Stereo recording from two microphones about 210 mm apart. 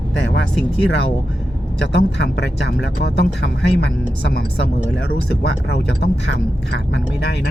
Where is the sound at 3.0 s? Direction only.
55° left (ahead or behind).